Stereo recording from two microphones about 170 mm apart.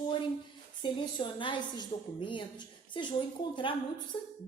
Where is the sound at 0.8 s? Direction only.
30° left (ahead or behind).